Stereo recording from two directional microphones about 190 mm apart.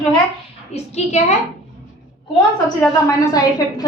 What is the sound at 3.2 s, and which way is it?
Speech, 20° left (ahead or behind).